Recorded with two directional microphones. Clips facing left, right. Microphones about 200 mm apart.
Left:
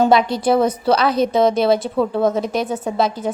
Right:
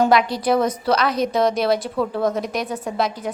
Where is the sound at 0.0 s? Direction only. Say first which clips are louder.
Left 3 dB; 25° left (ahead or behind).